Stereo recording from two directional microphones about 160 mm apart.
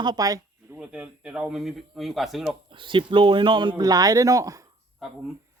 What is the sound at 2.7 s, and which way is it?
Speech, 30° right (ahead or behind).